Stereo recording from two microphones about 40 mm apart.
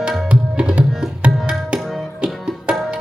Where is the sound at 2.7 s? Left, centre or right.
Right.